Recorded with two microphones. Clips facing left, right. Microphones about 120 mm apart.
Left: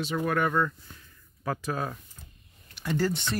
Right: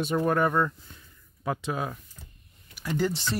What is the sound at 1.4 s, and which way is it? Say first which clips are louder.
Speech: right 1 dB; 15° right (ahead or behind).